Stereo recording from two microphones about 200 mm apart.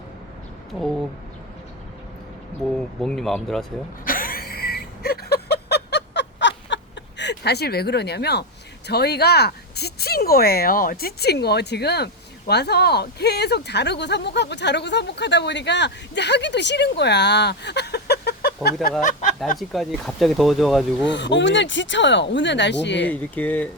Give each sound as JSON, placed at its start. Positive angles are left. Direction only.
{"t": 0.7, "sound": "speech", "side_deg": 0}
{"t": 2.6, "sound": "speech", "side_deg": 5}
{"t": 4.0, "sound": "a sound", "side_deg": 45}
{"t": 8.9, "sound": "speech", "side_deg": 55}
{"t": 19.5, "sound": "speech", "side_deg": 0}
{"t": 21.1, "sound": "speech", "side_deg": 65}
{"t": 23.0, "sound": "speech", "side_deg": 10}